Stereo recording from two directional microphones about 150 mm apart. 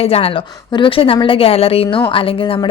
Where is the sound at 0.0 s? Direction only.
40° left (ahead or behind).